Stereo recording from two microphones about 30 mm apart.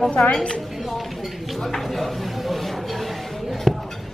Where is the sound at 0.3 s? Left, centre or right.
Left.